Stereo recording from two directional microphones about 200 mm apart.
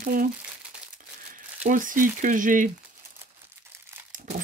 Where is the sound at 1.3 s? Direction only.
40° right (ahead or behind).